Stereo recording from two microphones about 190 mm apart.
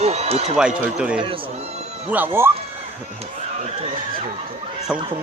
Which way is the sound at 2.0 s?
10° right (ahead or behind).